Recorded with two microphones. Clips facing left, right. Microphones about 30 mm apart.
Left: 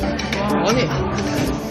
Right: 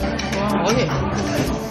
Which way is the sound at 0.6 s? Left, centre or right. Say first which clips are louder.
Left 1 dB; centre.